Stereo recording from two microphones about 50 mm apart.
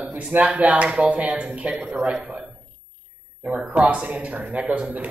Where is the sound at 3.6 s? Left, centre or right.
Right.